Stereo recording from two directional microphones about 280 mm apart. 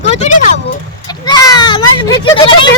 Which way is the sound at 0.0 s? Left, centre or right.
Left.